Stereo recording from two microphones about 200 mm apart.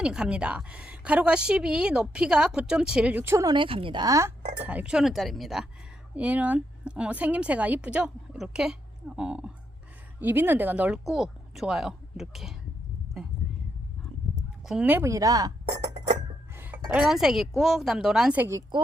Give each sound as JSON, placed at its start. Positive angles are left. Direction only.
{"t": 0.0, "sound": "a woman's voice", "side_deg": -5}
{"t": 14.7, "sound": "speech", "side_deg": -5}
{"t": 16.6, "sound": "a woman's voice", "side_deg": -10}